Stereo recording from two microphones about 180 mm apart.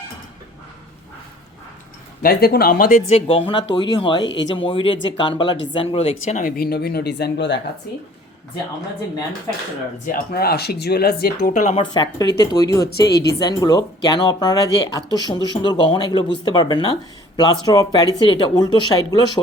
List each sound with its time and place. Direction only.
2.2 s speech: 60° left (ahead or behind)
3.1 s speech: 30° left (ahead or behind)
6.4 s speech: 60° left (ahead or behind); by 7.6 s 75° left (ahead or behind)
10.1 s speech: 60° left (ahead or behind)
11.7 s speech: 25° left (ahead or behind)
12.9 s speech: 65° left (ahead or behind)
13.4 s speech: 20° left (ahead or behind)